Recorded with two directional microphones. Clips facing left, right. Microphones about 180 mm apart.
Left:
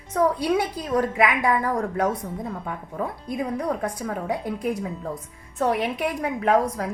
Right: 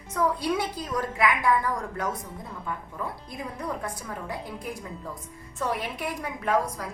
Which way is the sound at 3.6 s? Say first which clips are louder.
Left 7 dB; 55° left (ahead or behind).